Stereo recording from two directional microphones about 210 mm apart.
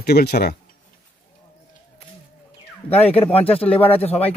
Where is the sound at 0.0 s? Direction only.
50° left (ahead or behind).